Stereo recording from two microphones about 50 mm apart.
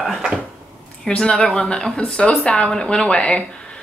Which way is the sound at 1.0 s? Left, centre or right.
Centre.